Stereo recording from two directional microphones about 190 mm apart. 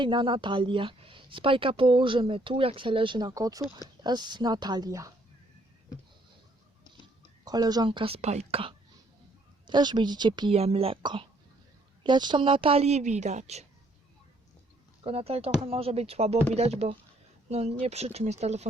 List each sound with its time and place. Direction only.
0.0 s a woman's voice: 25° right (ahead or behind)
7.0 s a woman's voice: 20° right (ahead or behind); by 13.7 s 35° right (ahead or behind)
15.0 s a woman's voice: 30° right (ahead or behind)